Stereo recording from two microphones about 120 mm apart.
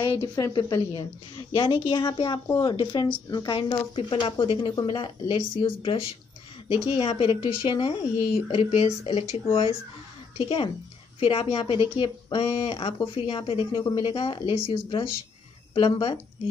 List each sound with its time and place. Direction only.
0.0 s a woman's voice: 35° left (ahead or behind)